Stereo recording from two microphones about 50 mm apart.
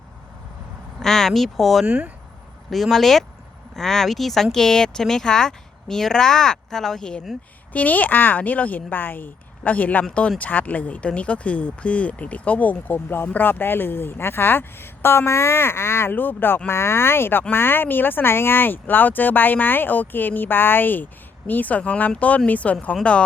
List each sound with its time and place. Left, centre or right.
0.9 s speech: centre
7.3 s speech: centre
7.7 s a woman's voice: left
16.6 s a woman's voice: left